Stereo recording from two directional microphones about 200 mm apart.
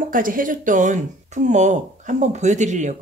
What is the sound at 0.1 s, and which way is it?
Speech, 45° right (ahead or behind).